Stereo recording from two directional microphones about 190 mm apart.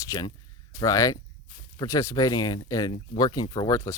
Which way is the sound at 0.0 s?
20° left (ahead or behind).